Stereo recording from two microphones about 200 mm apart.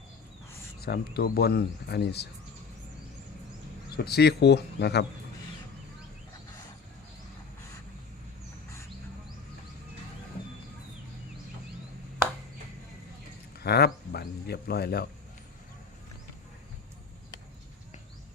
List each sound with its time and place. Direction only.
0.8 s speech: 50° left (ahead or behind)
3.9 s speech: 50° left (ahead or behind)
13.6 s speech: 55° left (ahead or behind)